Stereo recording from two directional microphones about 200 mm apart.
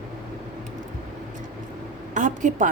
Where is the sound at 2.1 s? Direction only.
40° right (ahead or behind).